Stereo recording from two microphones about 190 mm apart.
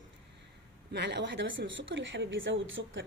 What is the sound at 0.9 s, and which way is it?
A man's voice, 65° right (ahead or behind).